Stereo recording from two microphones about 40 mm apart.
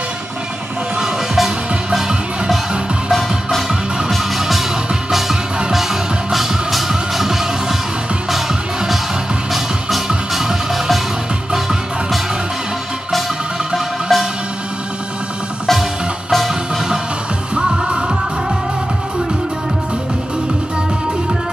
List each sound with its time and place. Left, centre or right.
0.9 s music: centre
4.1 s music: centre
6.3 s music: centre
9.5 s music: centre
13.7 s music: centre
16.3 s music: centre
17.6 s music: right